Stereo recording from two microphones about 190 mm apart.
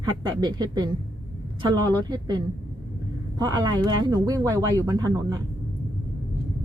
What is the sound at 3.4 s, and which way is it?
Speech, 20° right (ahead or behind).